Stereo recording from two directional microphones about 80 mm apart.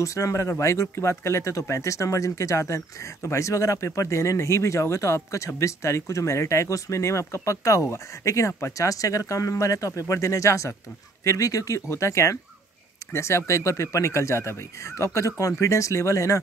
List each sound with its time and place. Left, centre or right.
0.0 s speech: left